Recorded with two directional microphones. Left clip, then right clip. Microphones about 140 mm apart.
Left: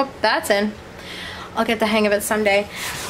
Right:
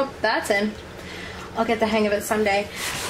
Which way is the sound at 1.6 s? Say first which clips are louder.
Left 3 dB; 35° left (ahead or behind).